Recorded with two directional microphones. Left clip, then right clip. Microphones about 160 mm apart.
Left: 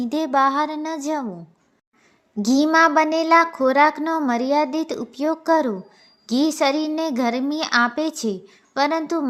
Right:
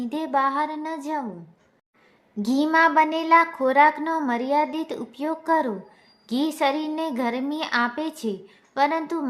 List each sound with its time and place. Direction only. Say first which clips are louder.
0.0 s a child's voice: left 4 dB; 35° left (ahead or behind)
2.4 s a child's voice: left 3 dB; 30° left (ahead or behind)